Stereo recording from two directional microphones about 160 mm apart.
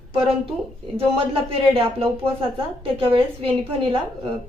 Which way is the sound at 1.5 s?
35° right (ahead or behind).